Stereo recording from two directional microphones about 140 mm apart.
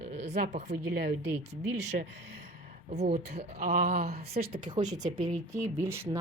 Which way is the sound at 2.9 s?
50° right (ahead or behind).